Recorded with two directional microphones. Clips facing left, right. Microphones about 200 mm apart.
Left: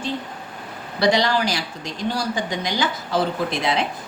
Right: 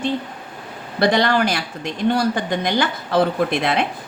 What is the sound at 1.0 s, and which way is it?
A woman's voice, 55° right (ahead or behind).